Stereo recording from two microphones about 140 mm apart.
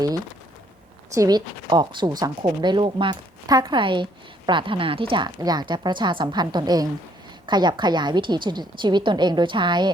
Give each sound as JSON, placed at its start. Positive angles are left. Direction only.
{"t": 1.1, "sound": "a woman's voice", "side_deg": -25}